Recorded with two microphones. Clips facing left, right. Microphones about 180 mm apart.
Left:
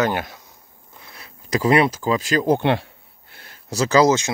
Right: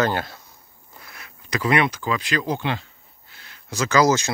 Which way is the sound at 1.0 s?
30° left (ahead or behind).